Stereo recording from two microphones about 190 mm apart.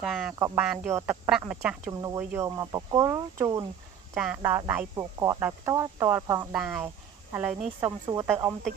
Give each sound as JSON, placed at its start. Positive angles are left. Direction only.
{"t": 0.0, "sound": "speech", "side_deg": 0}
{"t": 0.4, "sound": "speech", "side_deg": -10}
{"t": 4.1, "sound": "speech", "side_deg": -5}
{"t": 7.8, "sound": "speech", "side_deg": -20}